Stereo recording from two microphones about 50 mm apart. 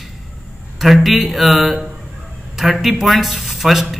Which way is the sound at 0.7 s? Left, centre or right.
Centre.